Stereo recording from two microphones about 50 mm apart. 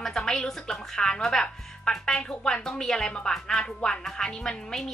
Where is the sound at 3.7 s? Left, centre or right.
Left.